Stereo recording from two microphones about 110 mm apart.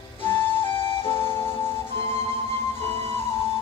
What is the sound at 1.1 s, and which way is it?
Music, 20° left (ahead or behind).